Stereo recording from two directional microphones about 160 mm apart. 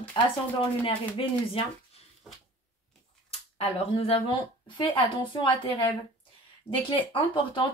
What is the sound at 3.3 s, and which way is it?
Speech, 35° left (ahead or behind).